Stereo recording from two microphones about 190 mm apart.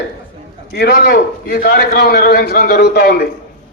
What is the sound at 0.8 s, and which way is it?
A man's voice, 50° left (ahead or behind).